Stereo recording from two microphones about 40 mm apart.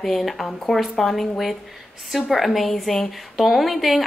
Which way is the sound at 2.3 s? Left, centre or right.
Centre.